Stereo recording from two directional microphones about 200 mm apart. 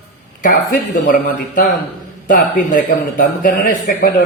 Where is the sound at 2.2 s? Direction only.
45° left (ahead or behind).